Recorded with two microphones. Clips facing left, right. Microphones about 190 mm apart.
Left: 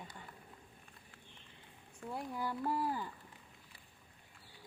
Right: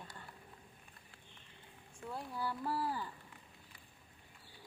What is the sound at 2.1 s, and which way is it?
Speech, 15° left (ahead or behind).